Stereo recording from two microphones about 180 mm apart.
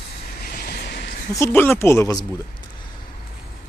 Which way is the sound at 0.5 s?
60° left (ahead or behind).